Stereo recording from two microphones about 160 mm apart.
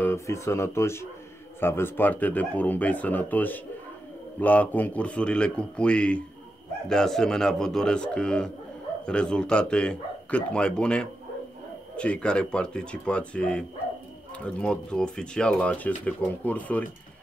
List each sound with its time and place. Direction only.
0.0 s speech: 15° left (ahead or behind)